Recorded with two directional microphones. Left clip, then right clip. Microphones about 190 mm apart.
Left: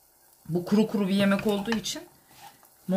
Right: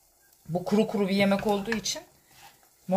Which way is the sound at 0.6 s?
25° right (ahead or behind).